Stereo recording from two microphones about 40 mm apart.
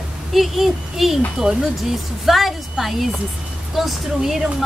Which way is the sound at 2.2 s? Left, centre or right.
Centre.